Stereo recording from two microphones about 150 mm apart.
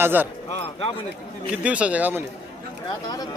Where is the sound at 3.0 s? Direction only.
25° left (ahead or behind).